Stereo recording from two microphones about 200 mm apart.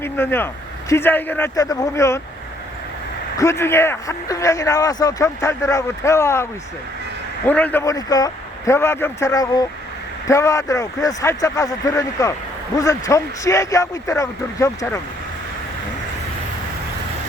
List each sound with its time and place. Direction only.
0.0 s a man's voice: 10° left (ahead or behind)
3.3 s a man's voice: 15° left (ahead or behind)